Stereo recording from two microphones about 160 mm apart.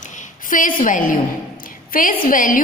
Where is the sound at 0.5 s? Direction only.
55° left (ahead or behind).